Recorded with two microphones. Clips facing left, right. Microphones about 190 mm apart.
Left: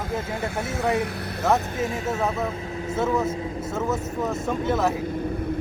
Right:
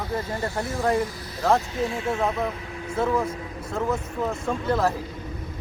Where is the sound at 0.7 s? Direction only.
65° left (ahead or behind).